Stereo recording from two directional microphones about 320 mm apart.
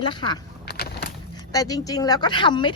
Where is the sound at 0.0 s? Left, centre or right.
Centre.